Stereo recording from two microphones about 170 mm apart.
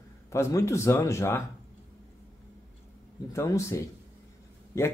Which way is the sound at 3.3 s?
15° left (ahead or behind).